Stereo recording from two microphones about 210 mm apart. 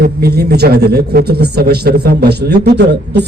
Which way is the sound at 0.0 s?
50° right (ahead or behind).